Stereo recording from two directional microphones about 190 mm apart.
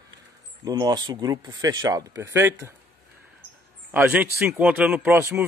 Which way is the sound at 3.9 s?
10° right (ahead or behind).